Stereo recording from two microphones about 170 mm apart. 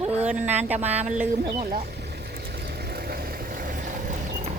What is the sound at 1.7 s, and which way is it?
Vehicle, 65° right (ahead or behind).